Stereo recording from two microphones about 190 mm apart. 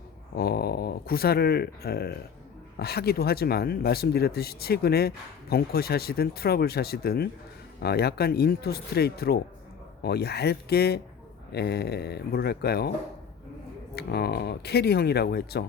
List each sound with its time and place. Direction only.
0.3 s speech: 55° left (ahead or behind)
13.9 s speech: 60° left (ahead or behind)